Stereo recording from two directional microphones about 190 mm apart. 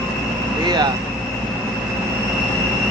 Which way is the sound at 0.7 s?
20° right (ahead or behind).